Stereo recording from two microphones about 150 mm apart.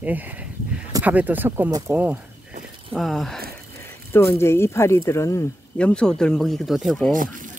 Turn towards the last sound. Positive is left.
turn(degrees=5)  # may be behind; listen again after turning